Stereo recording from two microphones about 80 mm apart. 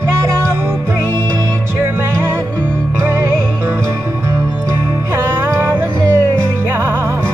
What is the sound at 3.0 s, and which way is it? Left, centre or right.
Music, right.